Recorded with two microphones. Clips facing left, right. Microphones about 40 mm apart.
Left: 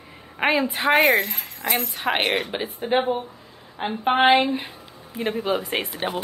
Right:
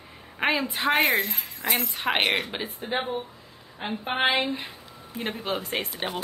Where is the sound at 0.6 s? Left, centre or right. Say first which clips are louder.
Left 4 dB; left.